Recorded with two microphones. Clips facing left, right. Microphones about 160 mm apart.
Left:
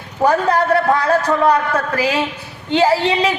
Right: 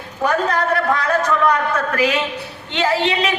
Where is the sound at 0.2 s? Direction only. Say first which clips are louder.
Left 4 dB; 30° left (ahead or behind).